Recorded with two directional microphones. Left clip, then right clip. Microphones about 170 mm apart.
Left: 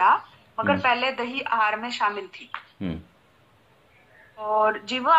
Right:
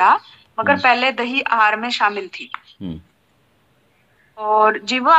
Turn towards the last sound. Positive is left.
turn(degrees=-35)  # may be behind; listen again after turning